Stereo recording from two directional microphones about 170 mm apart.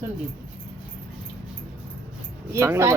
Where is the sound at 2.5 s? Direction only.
15° right (ahead or behind).